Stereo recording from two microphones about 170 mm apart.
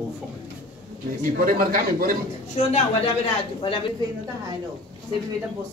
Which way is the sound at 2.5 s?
40° left (ahead or behind).